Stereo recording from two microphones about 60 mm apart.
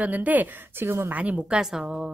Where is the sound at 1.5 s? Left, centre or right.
Centre.